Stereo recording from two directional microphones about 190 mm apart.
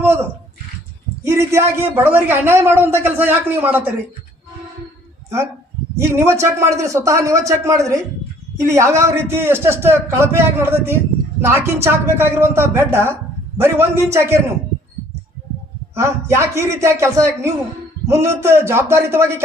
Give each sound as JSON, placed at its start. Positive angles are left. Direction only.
{"t": 0.0, "sound": "a sound", "side_deg": -15}
{"t": 1.2, "sound": "a man's voice", "side_deg": -15}
{"t": 6.0, "sound": "a man's voice", "side_deg": -15}
{"t": 16.0, "sound": "a man's voice", "side_deg": -15}